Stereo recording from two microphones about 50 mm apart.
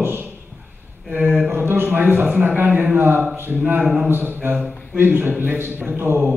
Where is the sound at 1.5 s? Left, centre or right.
Right.